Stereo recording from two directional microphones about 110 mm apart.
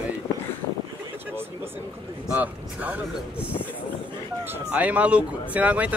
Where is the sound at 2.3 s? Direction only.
15° right (ahead or behind).